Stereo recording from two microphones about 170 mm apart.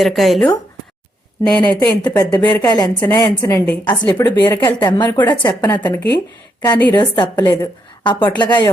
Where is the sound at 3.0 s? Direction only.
10° left (ahead or behind).